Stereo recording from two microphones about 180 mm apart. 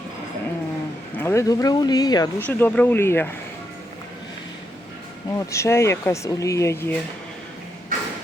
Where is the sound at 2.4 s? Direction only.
10° left (ahead or behind).